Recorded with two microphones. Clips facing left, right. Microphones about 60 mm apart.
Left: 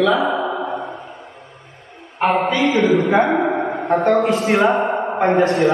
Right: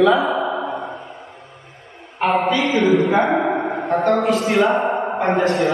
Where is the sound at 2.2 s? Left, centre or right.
Centre.